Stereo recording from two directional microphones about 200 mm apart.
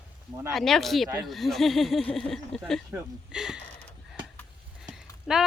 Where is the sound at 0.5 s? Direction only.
Centre (ahead or behind).